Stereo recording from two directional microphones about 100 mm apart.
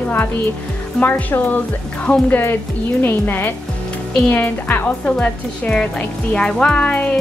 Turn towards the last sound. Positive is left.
turn(degrees=15)  # may be behind; listen again after turning